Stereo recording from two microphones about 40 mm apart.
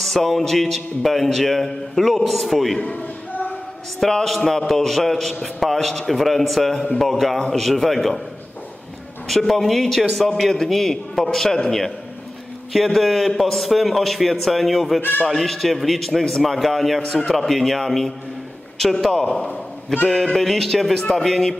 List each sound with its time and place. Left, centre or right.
0.0 s a man's voice: centre
2.8 s a sound: left
4.0 s a man's voice: centre
9.3 s a man's voice: centre
12.7 s a man's voice: centre
15.0 s speech: left
15.2 s a man's voice: centre
19.1 s a man's voice: centre